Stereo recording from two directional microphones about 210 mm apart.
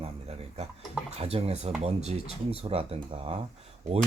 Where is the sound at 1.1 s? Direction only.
30° right (ahead or behind).